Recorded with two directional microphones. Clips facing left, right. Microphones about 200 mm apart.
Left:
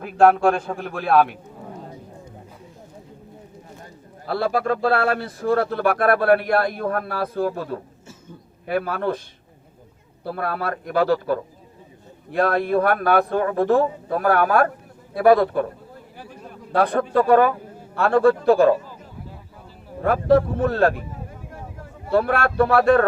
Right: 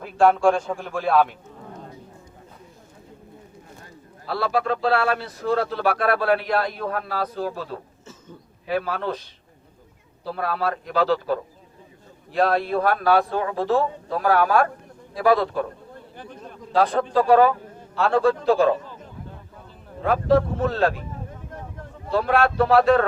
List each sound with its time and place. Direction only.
0.0 s a man's voice: 55° left (ahead or behind)
4.3 s a man's voice: 50° left (ahead or behind)
10.2 s a man's voice: 55° left (ahead or behind)
16.1 s a sound: 5° left (ahead or behind)
16.7 s a man's voice: 60° left (ahead or behind)
20.0 s a man's voice: 55° left (ahead or behind)
21.5 s a sound: 5° left (ahead or behind)
22.1 s a man's voice: 55° left (ahead or behind)